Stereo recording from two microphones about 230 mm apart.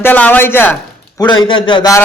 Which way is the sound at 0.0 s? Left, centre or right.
Centre.